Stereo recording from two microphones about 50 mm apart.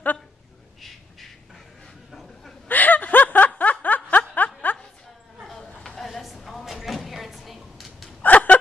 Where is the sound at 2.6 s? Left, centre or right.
Left.